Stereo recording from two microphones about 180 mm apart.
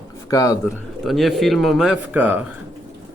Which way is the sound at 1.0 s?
Centre (ahead or behind).